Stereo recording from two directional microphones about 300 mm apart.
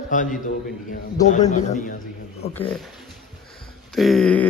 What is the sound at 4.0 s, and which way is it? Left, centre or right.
Speech, centre.